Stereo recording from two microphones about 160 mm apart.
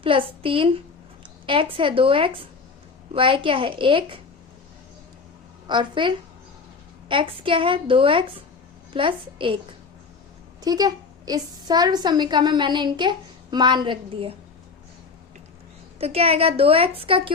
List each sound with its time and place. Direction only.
0.0 s a woman's voice: 35° right (ahead or behind)
5.6 s a woman's voice: 30° right (ahead or behind)
10.6 s a woman's voice: 25° right (ahead or behind)
16.0 s a woman's voice: 40° right (ahead or behind)